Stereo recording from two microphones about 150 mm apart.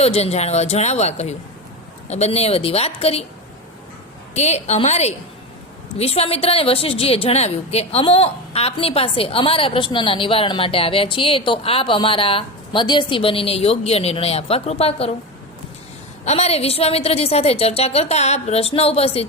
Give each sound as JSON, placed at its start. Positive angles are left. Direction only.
{"t": 0.0, "sound": "a woman's voice", "side_deg": 45}
{"t": 4.4, "sound": "a woman's voice", "side_deg": 45}
{"t": 16.2, "sound": "a woman's voice", "side_deg": 45}